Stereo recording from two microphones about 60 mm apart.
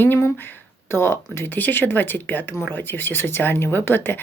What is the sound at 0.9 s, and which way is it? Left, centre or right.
Speech, left.